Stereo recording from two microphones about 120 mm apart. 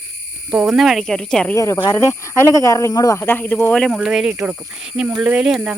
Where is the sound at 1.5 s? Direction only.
25° left (ahead or behind).